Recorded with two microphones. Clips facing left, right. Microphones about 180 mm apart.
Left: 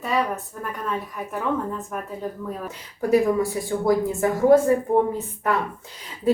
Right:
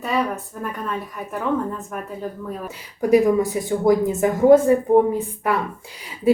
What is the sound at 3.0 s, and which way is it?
Speech, 15° right (ahead or behind).